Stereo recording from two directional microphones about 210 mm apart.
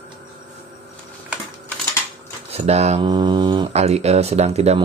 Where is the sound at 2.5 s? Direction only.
30° right (ahead or behind).